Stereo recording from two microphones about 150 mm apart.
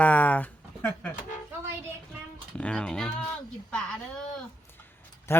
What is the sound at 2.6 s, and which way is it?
Speech, 10° left (ahead or behind).